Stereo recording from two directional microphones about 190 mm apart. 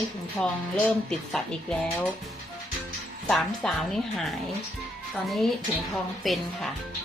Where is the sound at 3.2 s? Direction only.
5° left (ahead or behind).